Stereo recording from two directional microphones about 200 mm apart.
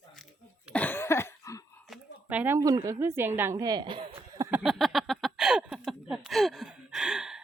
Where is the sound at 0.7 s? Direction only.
10° left (ahead or behind).